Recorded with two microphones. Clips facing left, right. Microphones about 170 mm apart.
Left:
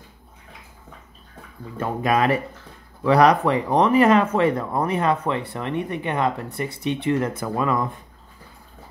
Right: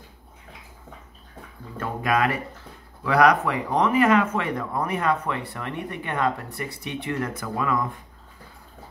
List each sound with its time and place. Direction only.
1.8 s speech: 25° left (ahead or behind)